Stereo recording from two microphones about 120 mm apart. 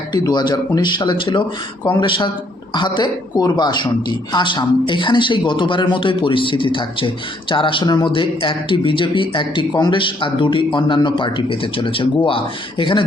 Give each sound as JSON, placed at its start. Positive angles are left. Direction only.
{"t": 0.1, "sound": "speech", "side_deg": 35}